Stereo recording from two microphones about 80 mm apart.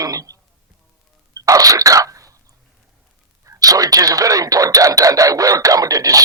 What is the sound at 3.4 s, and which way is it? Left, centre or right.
Speech, right.